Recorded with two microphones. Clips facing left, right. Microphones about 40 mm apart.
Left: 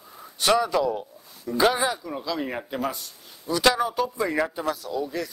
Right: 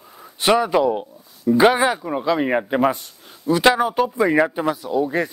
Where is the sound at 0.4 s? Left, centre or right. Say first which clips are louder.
Right 5 dB; right.